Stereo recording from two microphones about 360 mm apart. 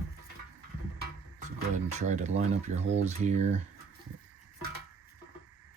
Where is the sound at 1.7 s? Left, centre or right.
Centre.